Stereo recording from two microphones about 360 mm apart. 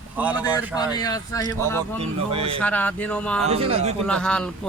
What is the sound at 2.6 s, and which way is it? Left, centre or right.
Speech, centre.